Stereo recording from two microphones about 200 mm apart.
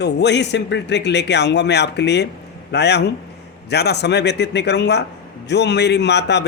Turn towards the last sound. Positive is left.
turn(degrees=60)  # may be behind; listen again after turning